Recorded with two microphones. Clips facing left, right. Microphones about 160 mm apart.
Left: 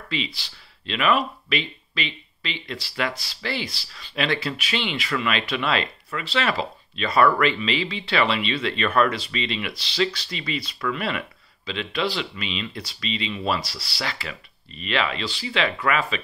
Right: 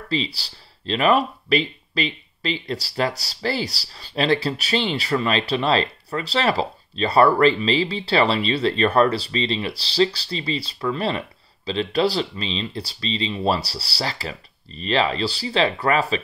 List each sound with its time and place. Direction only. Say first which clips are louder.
0.1 s speech: right 5 dB; 35° right (ahead or behind)